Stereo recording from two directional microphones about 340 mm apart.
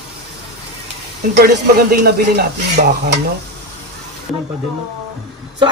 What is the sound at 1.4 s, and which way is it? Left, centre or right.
A man's voice, right.